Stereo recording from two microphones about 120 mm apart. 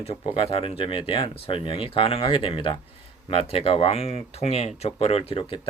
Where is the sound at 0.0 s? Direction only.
55° left (ahead or behind).